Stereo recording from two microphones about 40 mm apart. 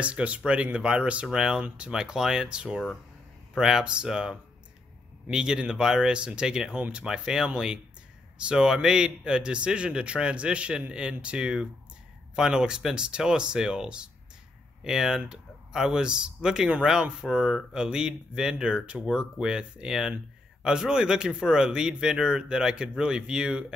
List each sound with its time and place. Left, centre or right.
0.0 s speech: right
1.2 s a man's voice: centre